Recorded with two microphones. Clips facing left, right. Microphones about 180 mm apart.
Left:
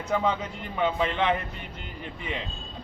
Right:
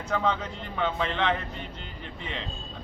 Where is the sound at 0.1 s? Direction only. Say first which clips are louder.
Left 1 dB; 10° left (ahead or behind).